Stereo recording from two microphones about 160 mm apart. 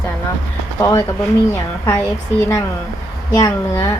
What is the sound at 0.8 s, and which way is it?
Speech, 20° left (ahead or behind).